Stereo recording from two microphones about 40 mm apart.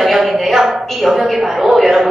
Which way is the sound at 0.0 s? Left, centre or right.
Centre.